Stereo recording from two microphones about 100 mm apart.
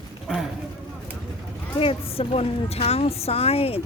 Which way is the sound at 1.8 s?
70° left (ahead or behind).